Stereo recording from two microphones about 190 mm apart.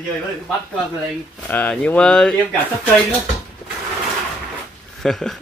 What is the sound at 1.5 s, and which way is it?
Speech, 5° left (ahead or behind).